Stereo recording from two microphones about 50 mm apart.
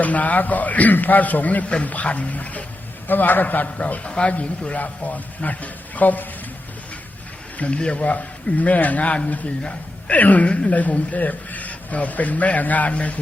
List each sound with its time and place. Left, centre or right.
0.0 s a man's voice: left
7.5 s a sound: left
7.8 s a man's voice: left